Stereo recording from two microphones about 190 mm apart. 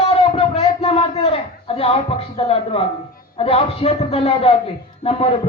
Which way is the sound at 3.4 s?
30° left (ahead or behind).